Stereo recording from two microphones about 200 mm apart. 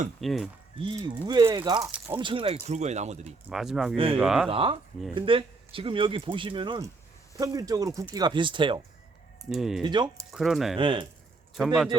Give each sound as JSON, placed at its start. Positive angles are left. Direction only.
{"t": 0.2, "sound": "speech", "side_deg": 0}
{"t": 0.8, "sound": "speech", "side_deg": -20}
{"t": 2.2, "sound": "speech", "side_deg": -25}
{"t": 3.5, "sound": "speech", "side_deg": 0}
{"t": 3.9, "sound": "speech", "side_deg": -25}
{"t": 4.2, "sound": "speech", "side_deg": 0}
{"t": 4.4, "sound": "speech", "side_deg": -25}
{"t": 9.5, "sound": "speech", "side_deg": 0}
{"t": 9.8, "sound": "speech", "side_deg": -20}
{"t": 10.3, "sound": "speech", "side_deg": 0}
{"t": 10.8, "sound": "speech", "side_deg": -25}
{"t": 11.5, "sound": "speech", "side_deg": 0}